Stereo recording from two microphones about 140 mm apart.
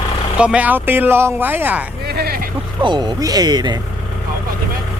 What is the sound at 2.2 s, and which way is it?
Vehicle, 90° right.